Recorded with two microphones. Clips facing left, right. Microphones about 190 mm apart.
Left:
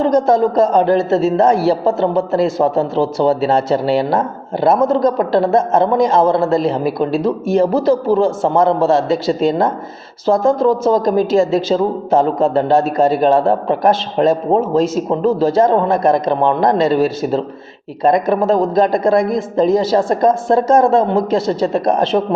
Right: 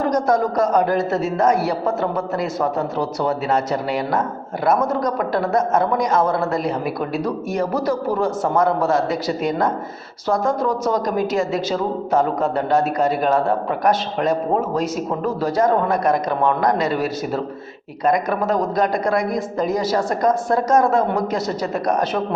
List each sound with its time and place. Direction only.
0.0 s a woman's voice: 25° left (ahead or behind)